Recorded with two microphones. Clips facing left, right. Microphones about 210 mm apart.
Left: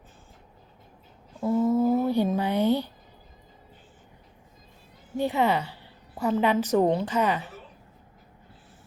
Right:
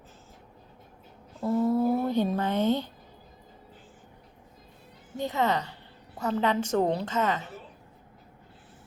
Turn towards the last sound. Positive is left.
turn(degrees=15)  # may be behind; listen again after turning